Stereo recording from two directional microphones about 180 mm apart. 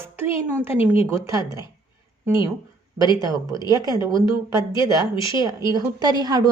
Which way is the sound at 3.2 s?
20° right (ahead or behind).